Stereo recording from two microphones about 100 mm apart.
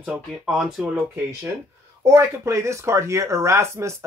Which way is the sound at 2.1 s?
30° right (ahead or behind).